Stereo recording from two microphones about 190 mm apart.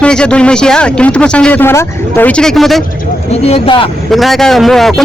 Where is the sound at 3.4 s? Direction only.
30° left (ahead or behind).